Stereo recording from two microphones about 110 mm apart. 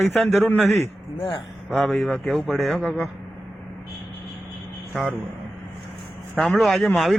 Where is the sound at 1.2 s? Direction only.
50° left (ahead or behind).